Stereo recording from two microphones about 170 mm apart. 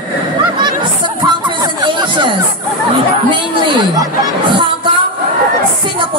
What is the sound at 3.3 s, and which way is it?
Speech, 25° right (ahead or behind).